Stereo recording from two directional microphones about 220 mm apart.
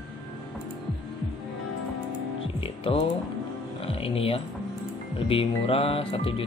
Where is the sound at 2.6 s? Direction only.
25° left (ahead or behind).